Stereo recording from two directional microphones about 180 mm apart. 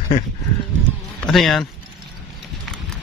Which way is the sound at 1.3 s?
Centre (ahead or behind).